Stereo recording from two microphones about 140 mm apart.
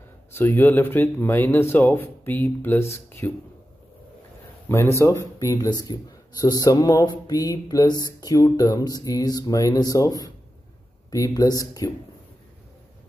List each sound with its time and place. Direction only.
0.3 s speech: 15° left (ahead or behind)
4.6 s speech: 20° left (ahead or behind)